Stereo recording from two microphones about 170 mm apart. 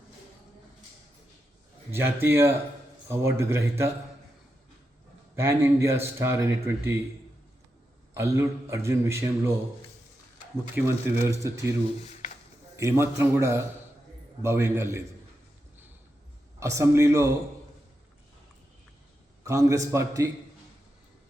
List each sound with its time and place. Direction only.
1.9 s speech: 15° right (ahead or behind)
5.4 s speech: 15° right (ahead or behind)
8.1 s speech: 15° right (ahead or behind)
10.8 s speech: 15° right (ahead or behind)
12.7 s speech: 15° right (ahead or behind)
16.6 s speech: 15° right (ahead or behind)
19.5 s a man's voice: 20° right (ahead or behind)